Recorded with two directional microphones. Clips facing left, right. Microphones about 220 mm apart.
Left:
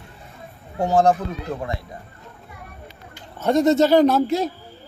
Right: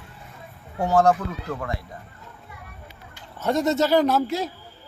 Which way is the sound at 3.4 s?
20° left (ahead or behind).